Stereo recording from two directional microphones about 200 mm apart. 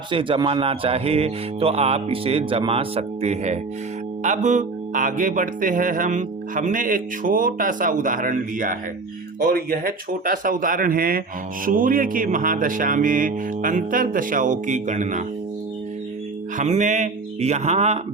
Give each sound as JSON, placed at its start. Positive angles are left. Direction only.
{"t": 0.1, "sound": "mantra", "side_deg": -25}
{"t": 4.2, "sound": "music", "side_deg": -40}
{"t": 9.4, "sound": "speech", "side_deg": -45}
{"t": 16.6, "sound": "music", "side_deg": -35}